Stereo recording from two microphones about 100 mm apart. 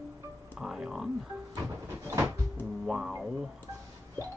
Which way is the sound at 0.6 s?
5° right (ahead or behind).